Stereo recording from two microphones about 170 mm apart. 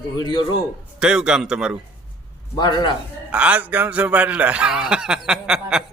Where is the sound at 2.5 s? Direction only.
25° left (ahead or behind).